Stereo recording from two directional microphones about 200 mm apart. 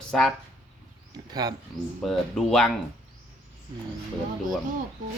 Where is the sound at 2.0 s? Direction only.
Centre (ahead or behind).